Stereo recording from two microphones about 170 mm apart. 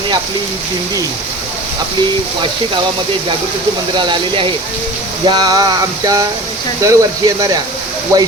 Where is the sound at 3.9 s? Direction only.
30° right (ahead or behind).